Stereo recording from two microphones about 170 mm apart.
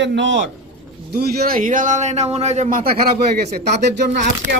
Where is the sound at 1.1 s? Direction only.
60° right (ahead or behind).